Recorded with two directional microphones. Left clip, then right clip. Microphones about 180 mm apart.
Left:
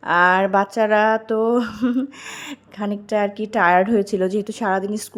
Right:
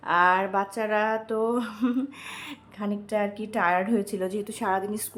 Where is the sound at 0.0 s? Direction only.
35° left (ahead or behind).